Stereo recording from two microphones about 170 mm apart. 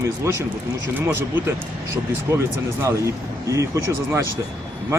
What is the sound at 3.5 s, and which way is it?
Speech, 20° right (ahead or behind).